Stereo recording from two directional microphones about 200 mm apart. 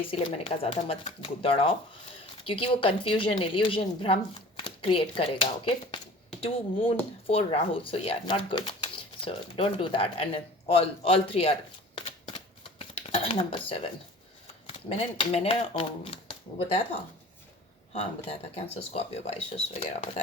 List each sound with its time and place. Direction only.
0.0 s speech: 25° left (ahead or behind)
11.9 s shuffling cards: 25° left (ahead or behind)
12.8 s a sound: 30° left (ahead or behind)
14.8 s speech: 30° left (ahead or behind)
17.9 s speech: 30° left (ahead or behind)